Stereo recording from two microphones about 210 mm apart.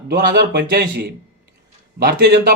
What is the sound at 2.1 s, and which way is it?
Speech, 50° right (ahead or behind).